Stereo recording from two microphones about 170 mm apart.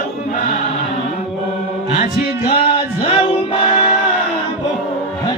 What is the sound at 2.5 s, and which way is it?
Music, 30° left (ahead or behind).